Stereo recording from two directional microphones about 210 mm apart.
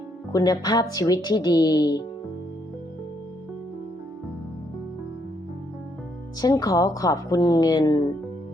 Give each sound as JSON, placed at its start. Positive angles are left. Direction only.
{"t": 0.3, "sound": "speech", "side_deg": 15}
{"t": 6.4, "sound": "speech", "side_deg": 15}